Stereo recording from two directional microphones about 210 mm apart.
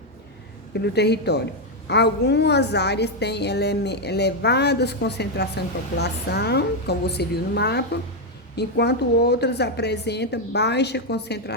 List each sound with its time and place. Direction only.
0.7 s a woman's voice: 50° left (ahead or behind)